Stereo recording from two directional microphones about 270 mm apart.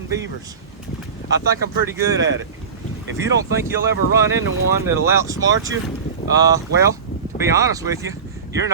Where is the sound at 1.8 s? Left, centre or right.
Centre.